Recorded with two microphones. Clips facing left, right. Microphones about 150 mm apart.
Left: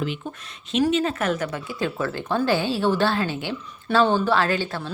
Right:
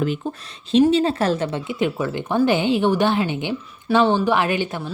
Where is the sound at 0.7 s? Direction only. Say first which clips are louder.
Right 5 dB; 30° right (ahead or behind).